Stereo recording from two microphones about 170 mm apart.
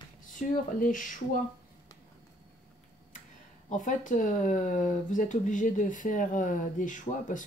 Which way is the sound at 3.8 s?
50° left (ahead or behind).